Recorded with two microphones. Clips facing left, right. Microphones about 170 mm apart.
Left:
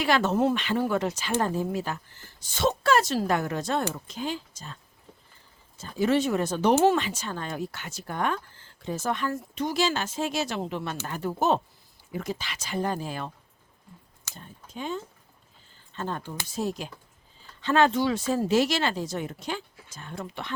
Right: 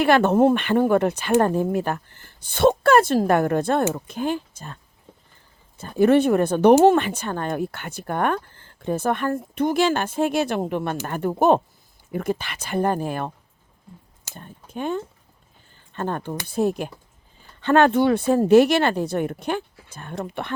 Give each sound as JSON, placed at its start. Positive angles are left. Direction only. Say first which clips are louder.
{"t": 0.0, "sound": "speech", "louder": "right 7 dB", "side_deg": -55}
{"t": 14.3, "sound": "speech", "louder": "right 7 dB", "side_deg": -55}